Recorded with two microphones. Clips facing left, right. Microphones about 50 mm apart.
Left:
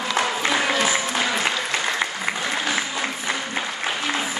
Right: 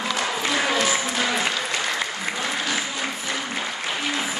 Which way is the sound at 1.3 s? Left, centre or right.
Centre.